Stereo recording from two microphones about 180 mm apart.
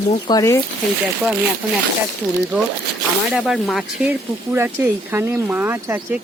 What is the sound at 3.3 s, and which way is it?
Speech, centre (ahead or behind).